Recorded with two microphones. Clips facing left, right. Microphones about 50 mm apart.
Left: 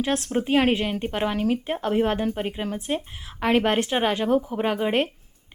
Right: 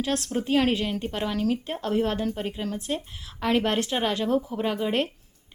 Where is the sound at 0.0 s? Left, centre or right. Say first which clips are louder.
Left 3 dB; left.